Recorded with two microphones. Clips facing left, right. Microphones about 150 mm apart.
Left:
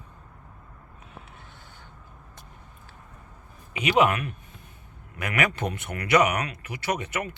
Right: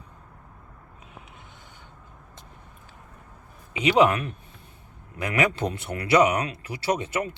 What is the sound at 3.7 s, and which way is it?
Speech, 30° right (ahead or behind).